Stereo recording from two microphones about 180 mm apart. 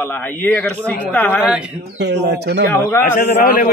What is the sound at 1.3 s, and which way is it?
Speech, 5° right (ahead or behind).